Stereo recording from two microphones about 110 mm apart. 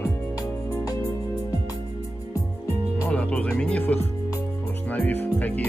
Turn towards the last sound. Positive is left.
turn(degrees=15)  # may be behind; listen again after turning